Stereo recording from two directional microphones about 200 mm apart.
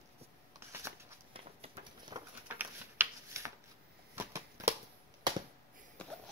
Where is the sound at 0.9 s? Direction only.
15° right (ahead or behind).